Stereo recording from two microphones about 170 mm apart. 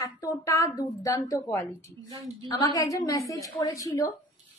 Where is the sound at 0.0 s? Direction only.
20° left (ahead or behind).